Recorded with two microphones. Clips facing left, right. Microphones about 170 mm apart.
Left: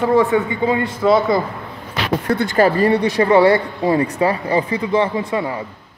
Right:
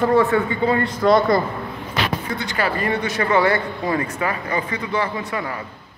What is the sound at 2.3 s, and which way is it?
A man's voice, 50° left (ahead or behind).